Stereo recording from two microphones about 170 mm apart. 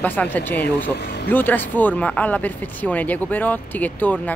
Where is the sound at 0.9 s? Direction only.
75° left (ahead or behind).